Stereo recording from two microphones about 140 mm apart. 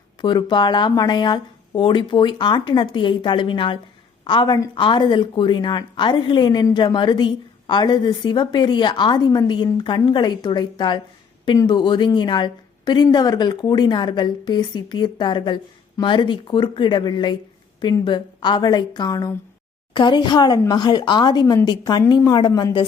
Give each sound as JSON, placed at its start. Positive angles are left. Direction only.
{"t": 0.2, "sound": "a woman's voice", "side_deg": 35}